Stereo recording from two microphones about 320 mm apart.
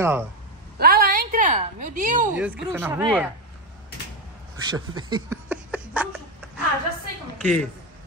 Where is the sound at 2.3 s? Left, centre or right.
Centre.